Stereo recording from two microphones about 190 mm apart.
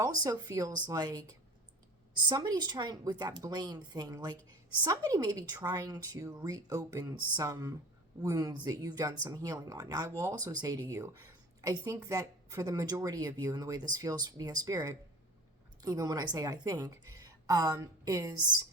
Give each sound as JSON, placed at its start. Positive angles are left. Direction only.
{"t": 0.3, "sound": "speech", "side_deg": -15}